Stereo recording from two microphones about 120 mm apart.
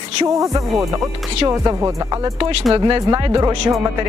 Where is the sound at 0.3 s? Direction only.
30° right (ahead or behind).